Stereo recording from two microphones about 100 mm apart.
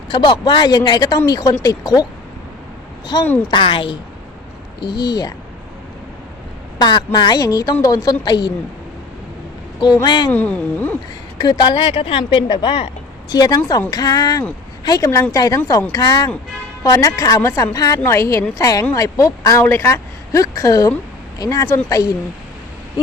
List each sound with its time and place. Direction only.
0.1 s a woman's voice: 55° left (ahead or behind)
3.1 s speech: 40° left (ahead or behind)
3.5 s speech: 60° left (ahead or behind)
4.8 s speech: 45° left (ahead or behind)
6.7 s a woman's voice: 45° left (ahead or behind)
9.8 s a woman's voice: 45° left (ahead or behind)
10.3 s speech: 15° left (ahead or behind)
11.3 s a woman's voice: 45° left (ahead or behind)
13.3 s speech: 40° left (ahead or behind)